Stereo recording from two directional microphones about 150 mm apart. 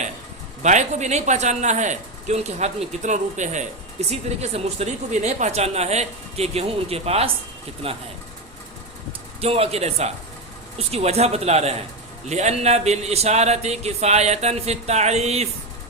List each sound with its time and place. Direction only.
0.6 s speech: 50° right (ahead or behind)
9.4 s speech: 40° right (ahead or behind)